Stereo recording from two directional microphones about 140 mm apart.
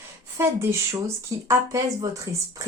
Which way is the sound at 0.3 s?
20° right (ahead or behind).